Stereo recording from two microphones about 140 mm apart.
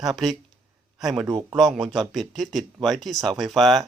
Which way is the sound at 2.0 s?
Centre (ahead or behind).